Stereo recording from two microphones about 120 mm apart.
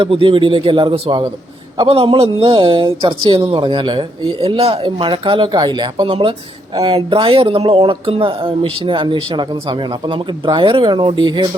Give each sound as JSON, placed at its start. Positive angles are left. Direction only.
{"t": 0.0, "sound": "speech", "side_deg": -45}
{"t": 4.4, "sound": "speech", "side_deg": -55}